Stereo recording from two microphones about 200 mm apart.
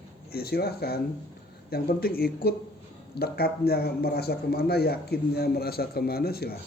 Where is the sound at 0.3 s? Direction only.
50° left (ahead or behind).